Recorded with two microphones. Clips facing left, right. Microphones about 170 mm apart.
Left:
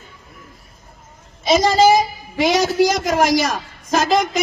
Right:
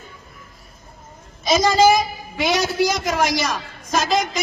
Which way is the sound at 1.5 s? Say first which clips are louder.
Left 2 dB; 30° left (ahead or behind).